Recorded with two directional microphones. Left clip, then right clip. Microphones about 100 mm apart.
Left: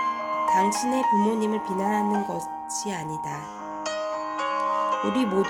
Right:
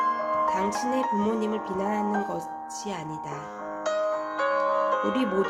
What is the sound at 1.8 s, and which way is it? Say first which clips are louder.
Speech: left 3 dB; 50° left (ahead or behind).